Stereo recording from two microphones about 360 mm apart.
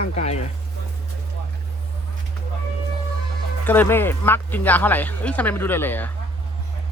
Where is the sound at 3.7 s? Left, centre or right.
Centre.